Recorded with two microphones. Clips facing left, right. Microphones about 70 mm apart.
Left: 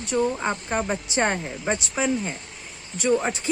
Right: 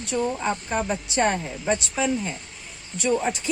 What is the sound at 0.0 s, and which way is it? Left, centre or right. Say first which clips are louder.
A woman's voice: left 1 dB; left.